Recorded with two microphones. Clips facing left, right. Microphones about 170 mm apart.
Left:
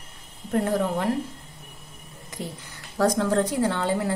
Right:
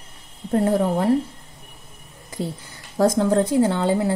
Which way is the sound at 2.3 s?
30° right (ahead or behind).